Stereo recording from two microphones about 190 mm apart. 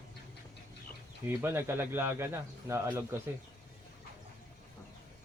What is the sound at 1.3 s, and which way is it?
Speech, 10° right (ahead or behind).